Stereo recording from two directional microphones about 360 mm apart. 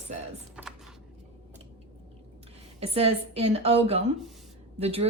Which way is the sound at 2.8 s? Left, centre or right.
Centre.